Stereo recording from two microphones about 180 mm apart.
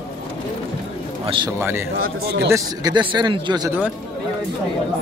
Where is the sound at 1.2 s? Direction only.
25° right (ahead or behind).